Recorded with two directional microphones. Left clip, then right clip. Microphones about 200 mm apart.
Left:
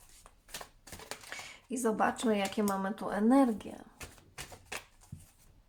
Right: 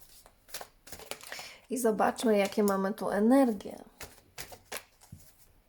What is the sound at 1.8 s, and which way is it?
Speech, 45° right (ahead or behind).